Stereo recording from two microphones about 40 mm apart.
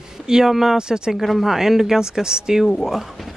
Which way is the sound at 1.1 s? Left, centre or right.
Centre.